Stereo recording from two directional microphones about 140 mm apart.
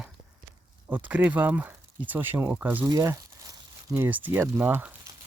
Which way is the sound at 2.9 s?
25° right (ahead or behind).